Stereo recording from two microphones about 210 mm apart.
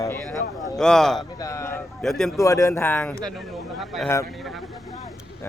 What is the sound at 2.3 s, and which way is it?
Speech, 15° left (ahead or behind).